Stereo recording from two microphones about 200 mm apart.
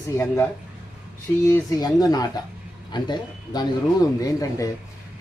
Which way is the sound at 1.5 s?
20° left (ahead or behind).